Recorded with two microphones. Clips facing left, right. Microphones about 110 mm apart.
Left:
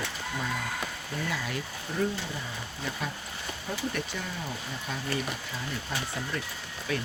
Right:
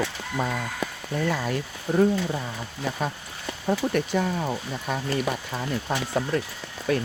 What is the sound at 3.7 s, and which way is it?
Speech, 50° right (ahead or behind).